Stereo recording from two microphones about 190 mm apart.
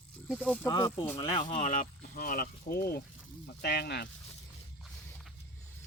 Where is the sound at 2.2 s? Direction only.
50° left (ahead or behind).